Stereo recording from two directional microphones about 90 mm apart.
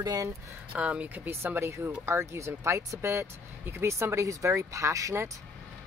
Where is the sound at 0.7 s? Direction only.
15° right (ahead or behind); by 5.3 s 35° right (ahead or behind).